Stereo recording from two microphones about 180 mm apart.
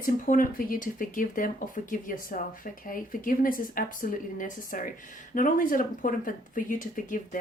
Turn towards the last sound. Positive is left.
turn(degrees=50)  # may be behind; listen again after turning